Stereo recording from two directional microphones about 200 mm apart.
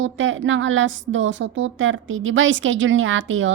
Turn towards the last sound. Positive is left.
turn(degrees=-75)  # may be behind; listen again after turning